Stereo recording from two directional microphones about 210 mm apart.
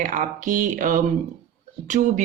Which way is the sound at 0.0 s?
40° right (ahead or behind).